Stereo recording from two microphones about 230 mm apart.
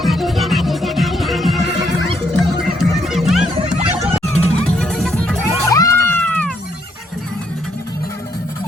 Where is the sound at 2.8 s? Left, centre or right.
Centre.